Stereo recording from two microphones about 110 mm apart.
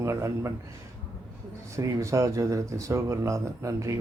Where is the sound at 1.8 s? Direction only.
30° right (ahead or behind).